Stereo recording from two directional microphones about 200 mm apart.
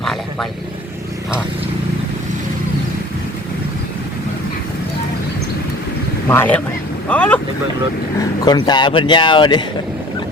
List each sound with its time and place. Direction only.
0.0 s vehicle: centre (ahead or behind)
6.2 s speech: 10° left (ahead or behind)
8.2 s speech: 20° left (ahead or behind)